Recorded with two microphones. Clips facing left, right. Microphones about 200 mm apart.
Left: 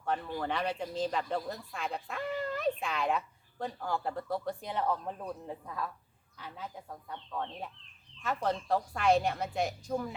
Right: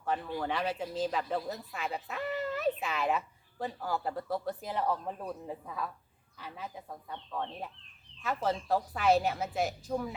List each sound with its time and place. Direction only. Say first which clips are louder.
0.0 s speech: even; 5° right (ahead or behind)